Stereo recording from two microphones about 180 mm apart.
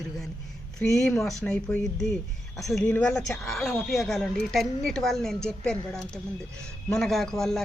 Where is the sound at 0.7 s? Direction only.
5° left (ahead or behind).